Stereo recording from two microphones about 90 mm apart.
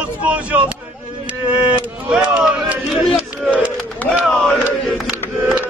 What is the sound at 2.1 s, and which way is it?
Speech, 5° right (ahead or behind).